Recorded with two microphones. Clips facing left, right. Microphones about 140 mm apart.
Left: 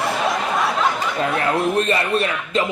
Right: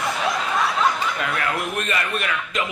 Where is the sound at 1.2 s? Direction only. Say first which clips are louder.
Left 10 dB; 30° left (ahead or behind).